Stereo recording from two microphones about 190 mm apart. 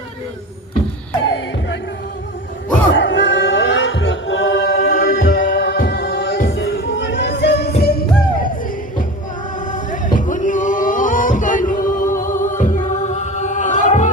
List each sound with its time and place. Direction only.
2.9 s music: 70° left (ahead or behind)
6.6 s music: 75° left (ahead or behind); by 8.4 s 55° left (ahead or behind)
9.7 s a sound: 45° left (ahead or behind)